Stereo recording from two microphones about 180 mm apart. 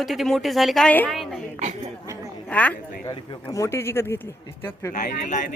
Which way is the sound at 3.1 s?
25° left (ahead or behind).